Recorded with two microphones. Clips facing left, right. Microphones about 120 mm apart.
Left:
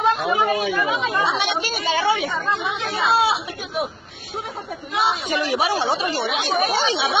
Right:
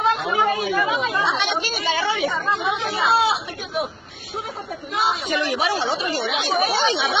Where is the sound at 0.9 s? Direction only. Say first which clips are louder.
Left 1 dB; centre (ahead or behind).